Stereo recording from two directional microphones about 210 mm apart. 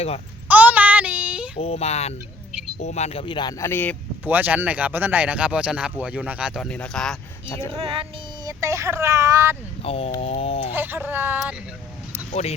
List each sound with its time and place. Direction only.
0.4 s child singing: 10° right (ahead or behind)
1.5 s speech: 30° left (ahead or behind); by 4.3 s 10° left (ahead or behind)
4.3 s speech: 10° right (ahead or behind); by 7.7 s 10° left (ahead or behind)
8.4 s speech: 15° right (ahead or behind)
9.8 s speech: 30° left (ahead or behind)
10.8 s speech: 10° right (ahead or behind)
12.3 s speech: 30° left (ahead or behind)